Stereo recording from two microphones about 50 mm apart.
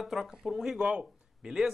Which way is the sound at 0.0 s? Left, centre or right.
Centre.